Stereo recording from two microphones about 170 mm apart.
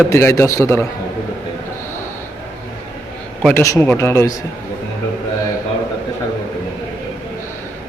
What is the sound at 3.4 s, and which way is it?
Speech, 15° left (ahead or behind).